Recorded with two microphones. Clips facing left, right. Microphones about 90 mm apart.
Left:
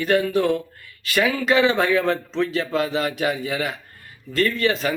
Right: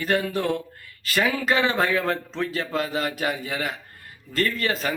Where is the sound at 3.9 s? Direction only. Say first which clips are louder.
Left 4 dB; 40° right (ahead or behind).